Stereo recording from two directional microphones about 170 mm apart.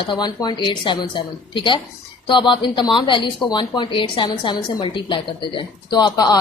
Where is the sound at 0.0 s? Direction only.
25° left (ahead or behind).